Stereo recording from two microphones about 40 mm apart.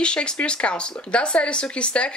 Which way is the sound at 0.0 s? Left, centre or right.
Left.